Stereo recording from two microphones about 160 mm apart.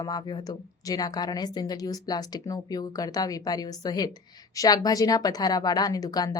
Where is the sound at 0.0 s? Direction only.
25° left (ahead or behind).